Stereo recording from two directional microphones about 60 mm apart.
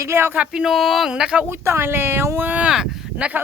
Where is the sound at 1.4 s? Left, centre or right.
Right.